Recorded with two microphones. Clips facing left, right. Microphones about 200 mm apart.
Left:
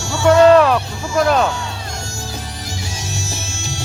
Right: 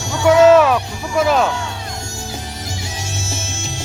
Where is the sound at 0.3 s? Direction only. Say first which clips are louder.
Even; 5° right (ahead or behind).